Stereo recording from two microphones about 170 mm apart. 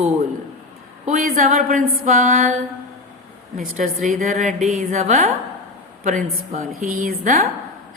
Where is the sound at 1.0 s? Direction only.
50° right (ahead or behind).